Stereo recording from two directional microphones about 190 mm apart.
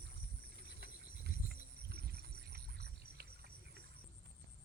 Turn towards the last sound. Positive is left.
turn(degrees=-55)  # may be behind; listen again after turning